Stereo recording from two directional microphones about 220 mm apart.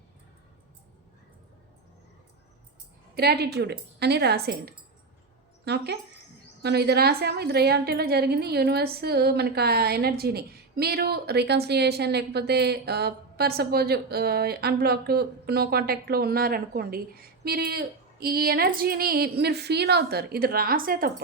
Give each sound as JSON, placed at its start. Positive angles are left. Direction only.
{"t": 3.2, "sound": "speech", "side_deg": -45}